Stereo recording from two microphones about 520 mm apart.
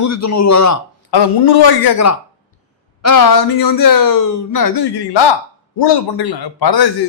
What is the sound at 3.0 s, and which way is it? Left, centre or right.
A man's voice, left.